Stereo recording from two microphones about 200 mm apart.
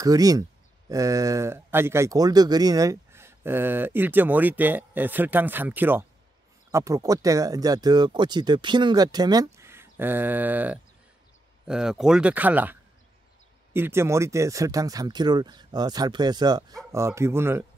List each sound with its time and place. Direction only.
0.0 s speech: 20° right (ahead or behind)
13.7 s speech: 10° right (ahead or behind)